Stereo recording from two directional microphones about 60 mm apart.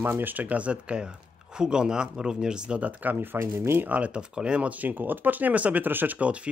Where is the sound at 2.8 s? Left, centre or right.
Right.